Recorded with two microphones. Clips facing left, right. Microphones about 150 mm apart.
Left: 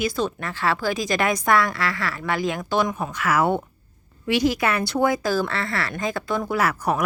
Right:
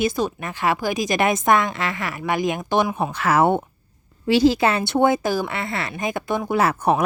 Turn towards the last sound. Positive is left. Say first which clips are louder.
# right 3 dB
turn(degrees=-25)  # may be behind; listen again after turning